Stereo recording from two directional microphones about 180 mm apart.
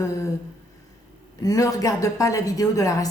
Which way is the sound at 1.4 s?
20° left (ahead or behind).